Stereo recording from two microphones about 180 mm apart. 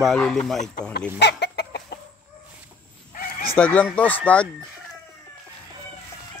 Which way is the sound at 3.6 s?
5° left (ahead or behind).